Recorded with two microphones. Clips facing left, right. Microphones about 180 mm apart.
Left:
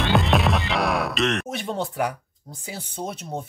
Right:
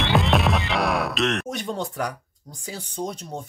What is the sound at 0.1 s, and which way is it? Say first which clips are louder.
Music: even; centre (ahead or behind).